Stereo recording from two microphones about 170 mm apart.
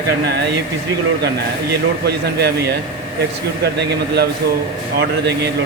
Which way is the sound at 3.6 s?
75° right (ahead or behind).